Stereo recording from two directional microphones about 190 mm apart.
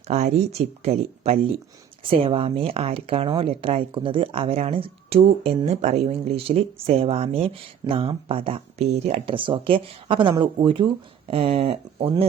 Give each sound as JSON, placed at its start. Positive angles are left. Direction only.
{"t": 0.1, "sound": "speech", "side_deg": -35}